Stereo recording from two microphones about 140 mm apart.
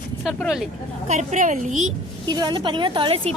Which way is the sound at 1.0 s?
60° right (ahead or behind).